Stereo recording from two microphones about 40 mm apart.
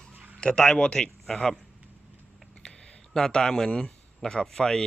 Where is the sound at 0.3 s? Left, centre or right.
Left.